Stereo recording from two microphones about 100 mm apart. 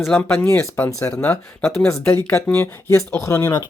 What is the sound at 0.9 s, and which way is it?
Speech, 35° left (ahead or behind).